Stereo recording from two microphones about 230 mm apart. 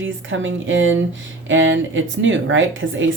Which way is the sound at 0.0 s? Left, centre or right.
Right.